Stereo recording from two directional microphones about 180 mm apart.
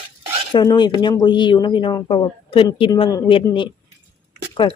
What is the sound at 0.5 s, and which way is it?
Speech, 25° left (ahead or behind).